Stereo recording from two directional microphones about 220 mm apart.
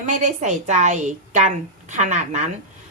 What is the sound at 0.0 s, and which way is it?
A woman's voice, 35° right (ahead or behind).